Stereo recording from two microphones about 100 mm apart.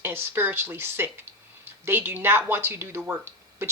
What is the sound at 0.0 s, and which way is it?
Speech, 25° right (ahead or behind).